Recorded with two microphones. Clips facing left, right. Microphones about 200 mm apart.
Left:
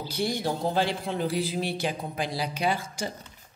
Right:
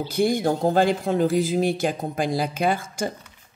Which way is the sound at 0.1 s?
50° right (ahead or behind).